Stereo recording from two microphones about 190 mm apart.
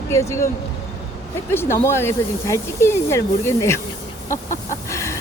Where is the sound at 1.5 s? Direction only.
10° left (ahead or behind).